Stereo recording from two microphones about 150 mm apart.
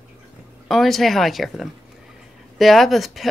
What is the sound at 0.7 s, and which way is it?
Speech, centre (ahead or behind).